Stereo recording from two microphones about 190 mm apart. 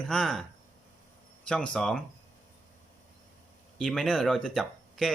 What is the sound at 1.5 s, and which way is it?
Speech, 5° left (ahead or behind).